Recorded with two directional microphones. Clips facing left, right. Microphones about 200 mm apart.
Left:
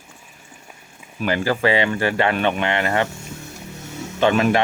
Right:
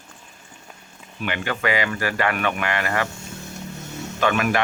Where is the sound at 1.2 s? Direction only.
35° left (ahead or behind).